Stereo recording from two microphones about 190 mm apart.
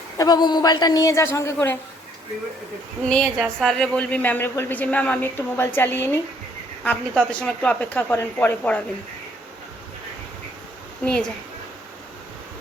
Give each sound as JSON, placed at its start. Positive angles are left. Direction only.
{"t": 0.2, "sound": "a woman's voice", "side_deg": 20}
{"t": 3.0, "sound": "a woman's voice", "side_deg": 5}
{"t": 7.3, "sound": "speech", "side_deg": 5}
{"t": 11.0, "sound": "a woman's voice", "side_deg": 5}